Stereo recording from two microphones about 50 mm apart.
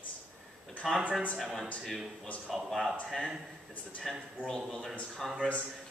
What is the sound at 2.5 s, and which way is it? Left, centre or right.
Speech, centre.